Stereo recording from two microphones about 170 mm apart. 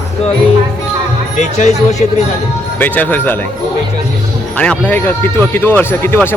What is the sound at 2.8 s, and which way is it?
Speech, 10° left (ahead or behind).